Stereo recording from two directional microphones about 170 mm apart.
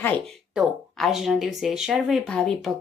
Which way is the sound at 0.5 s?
Centre (ahead or behind).